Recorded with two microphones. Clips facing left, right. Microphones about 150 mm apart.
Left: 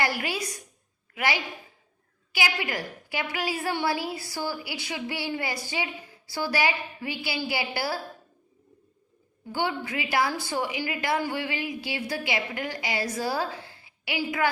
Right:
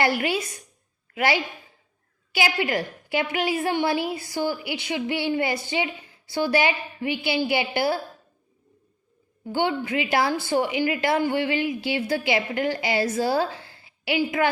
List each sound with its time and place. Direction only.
0.0 s a woman's voice: 25° right (ahead or behind)
9.5 s a woman's voice: 25° right (ahead or behind)